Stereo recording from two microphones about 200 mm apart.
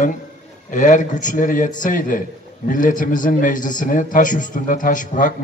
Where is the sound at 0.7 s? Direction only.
40° left (ahead or behind).